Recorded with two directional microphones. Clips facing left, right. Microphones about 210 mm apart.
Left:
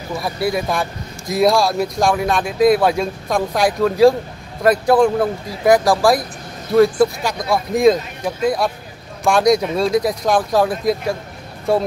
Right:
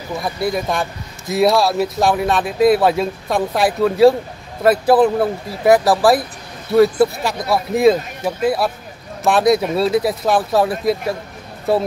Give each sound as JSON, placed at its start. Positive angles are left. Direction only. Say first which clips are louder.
{"t": 0.2, "sound": "speech", "louder": "even", "side_deg": 0}